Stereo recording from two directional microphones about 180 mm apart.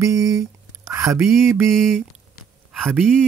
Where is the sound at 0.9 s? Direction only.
15° right (ahead or behind).